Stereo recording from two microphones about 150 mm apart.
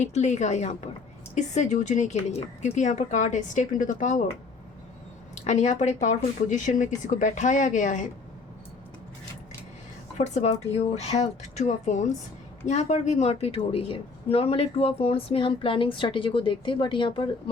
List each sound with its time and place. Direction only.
0.0 s a woman's voice: 50° left (ahead or behind)
5.5 s speech: 50° left (ahead or behind)
10.2 s a woman's voice: 50° left (ahead or behind); by 17.2 s 35° left (ahead or behind)